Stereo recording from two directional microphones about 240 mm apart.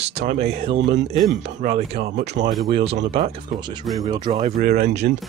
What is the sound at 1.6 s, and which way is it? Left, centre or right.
Speech, right.